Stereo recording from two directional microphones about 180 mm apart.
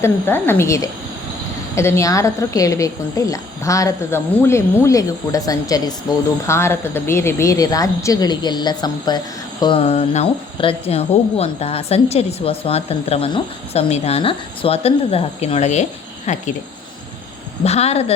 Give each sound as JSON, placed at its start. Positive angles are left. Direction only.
{"t": 0.0, "sound": "a woman's voice", "side_deg": 10}
{"t": 17.6, "sound": "a woman's voice", "side_deg": 35}